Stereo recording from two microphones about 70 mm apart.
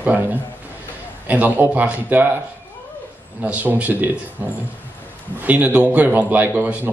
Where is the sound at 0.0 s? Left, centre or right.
Right.